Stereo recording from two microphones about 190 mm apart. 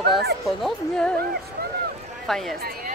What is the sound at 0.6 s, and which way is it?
Speech, 5° left (ahead or behind).